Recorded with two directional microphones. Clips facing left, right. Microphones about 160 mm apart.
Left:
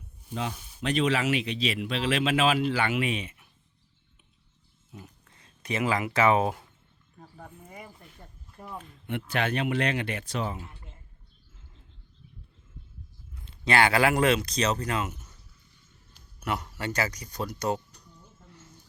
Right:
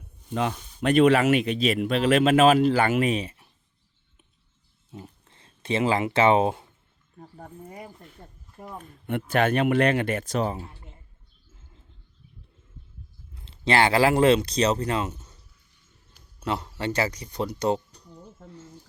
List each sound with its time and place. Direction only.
0.8 s speech: 55° right (ahead or behind); by 3.5 s 35° right (ahead or behind)
4.9 s speech: 30° right (ahead or behind)
8.8 s speech: 50° right (ahead or behind); by 10.8 s 35° right (ahead or behind)
13.3 s speech: 30° right (ahead or behind)
16.4 s speech: 30° right (ahead or behind)